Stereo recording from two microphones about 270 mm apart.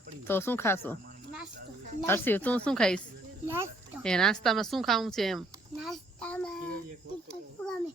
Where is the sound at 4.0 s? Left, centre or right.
Centre.